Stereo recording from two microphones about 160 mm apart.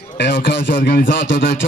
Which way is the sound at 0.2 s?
75° left (ahead or behind).